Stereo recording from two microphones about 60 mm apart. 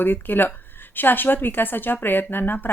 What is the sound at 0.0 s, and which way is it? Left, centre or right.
Speech, left.